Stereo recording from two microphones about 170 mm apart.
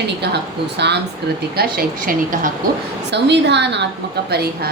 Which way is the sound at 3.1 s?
90° right.